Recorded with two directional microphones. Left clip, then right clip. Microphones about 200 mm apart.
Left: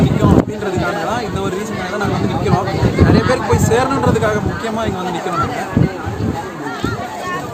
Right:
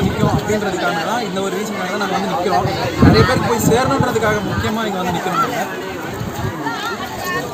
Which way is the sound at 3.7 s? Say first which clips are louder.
Left 2 dB; centre (ahead or behind).